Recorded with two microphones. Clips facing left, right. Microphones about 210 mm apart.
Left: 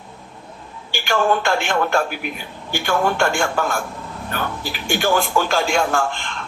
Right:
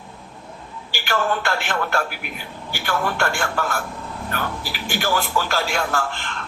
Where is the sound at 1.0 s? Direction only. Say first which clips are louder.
Left 4 dB; 15° left (ahead or behind).